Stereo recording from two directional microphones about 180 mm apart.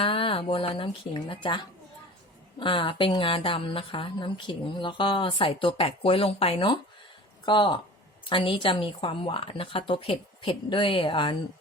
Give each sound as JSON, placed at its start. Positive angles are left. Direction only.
{"t": 0.0, "sound": "a woman's voice", "side_deg": 30}